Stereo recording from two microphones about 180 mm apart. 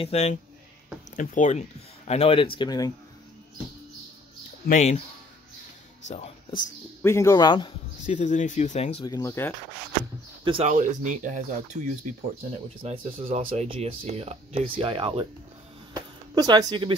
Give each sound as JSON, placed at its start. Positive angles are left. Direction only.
{"t": 0.0, "sound": "speech", "side_deg": 35}
{"t": 4.6, "sound": "speech", "side_deg": 40}
{"t": 6.0, "sound": "speech", "side_deg": 40}
{"t": 7.0, "sound": "speech", "side_deg": 15}
{"t": 8.1, "sound": "speech", "side_deg": 40}
{"t": 9.0, "sound": "speech", "side_deg": 20}
{"t": 10.4, "sound": "speech", "side_deg": -30}
{"t": 10.7, "sound": "speech", "side_deg": -45}
{"t": 15.9, "sound": "a sound", "side_deg": -20}